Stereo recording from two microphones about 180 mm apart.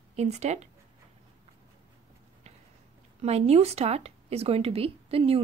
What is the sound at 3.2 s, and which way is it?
A woman's voice, 35° right (ahead or behind).